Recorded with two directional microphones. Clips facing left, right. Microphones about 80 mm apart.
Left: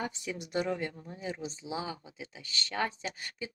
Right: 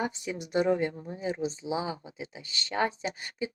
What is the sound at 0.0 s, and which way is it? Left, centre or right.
Speech, centre.